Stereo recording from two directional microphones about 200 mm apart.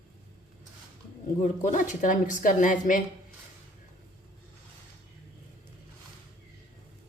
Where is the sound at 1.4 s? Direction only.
40° left (ahead or behind).